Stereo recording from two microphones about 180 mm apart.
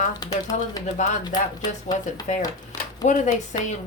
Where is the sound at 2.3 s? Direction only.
40° left (ahead or behind).